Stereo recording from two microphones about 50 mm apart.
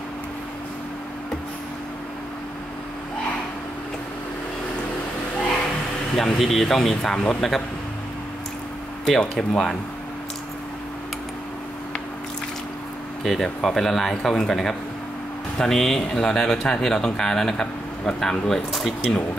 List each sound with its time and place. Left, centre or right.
6.1 s speech: centre
9.2 s speech: centre
13.2 s speech: centre